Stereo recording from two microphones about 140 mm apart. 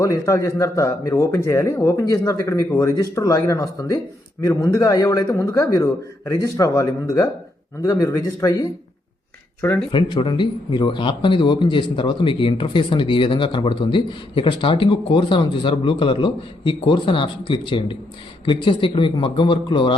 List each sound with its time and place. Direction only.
0.0 s a man's voice: 20° left (ahead or behind)
9.9 s a man's voice: 35° left (ahead or behind)